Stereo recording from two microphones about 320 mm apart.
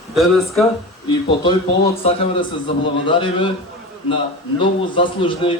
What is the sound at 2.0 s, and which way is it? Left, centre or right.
A man's voice, centre.